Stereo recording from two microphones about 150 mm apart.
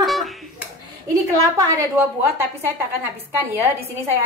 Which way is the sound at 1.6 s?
20° right (ahead or behind).